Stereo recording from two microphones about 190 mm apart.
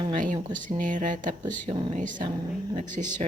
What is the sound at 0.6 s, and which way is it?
Speech, 45° right (ahead or behind).